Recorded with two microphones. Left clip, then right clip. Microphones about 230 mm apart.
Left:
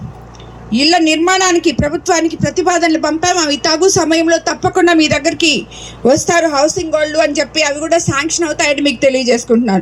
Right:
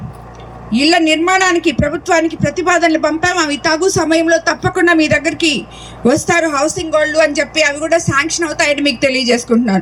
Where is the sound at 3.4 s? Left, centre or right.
Right.